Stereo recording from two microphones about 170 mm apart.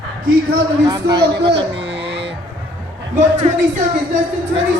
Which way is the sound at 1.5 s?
90° right.